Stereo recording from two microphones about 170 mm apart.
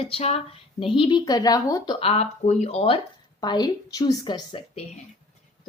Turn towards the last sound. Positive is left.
turn(degrees=30)  # may be behind; listen again after turning